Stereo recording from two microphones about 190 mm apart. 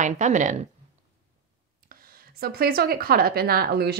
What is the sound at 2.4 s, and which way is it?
A woman's voice, 55° right (ahead or behind).